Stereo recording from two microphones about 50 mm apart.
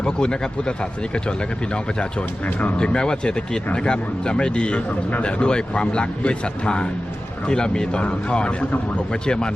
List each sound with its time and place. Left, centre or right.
0.0 s speech: centre
2.6 s speech: left
2.8 s speech: centre